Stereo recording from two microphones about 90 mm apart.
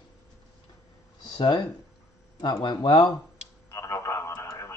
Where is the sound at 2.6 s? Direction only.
55° left (ahead or behind).